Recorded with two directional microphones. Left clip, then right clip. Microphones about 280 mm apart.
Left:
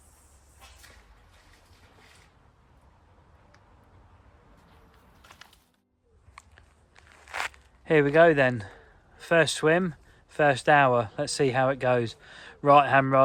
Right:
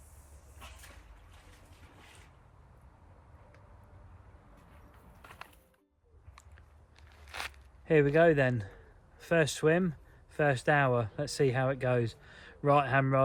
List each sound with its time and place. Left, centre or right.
6.3 s speech: left